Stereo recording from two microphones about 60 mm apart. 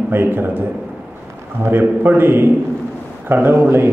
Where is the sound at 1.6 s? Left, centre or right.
Right.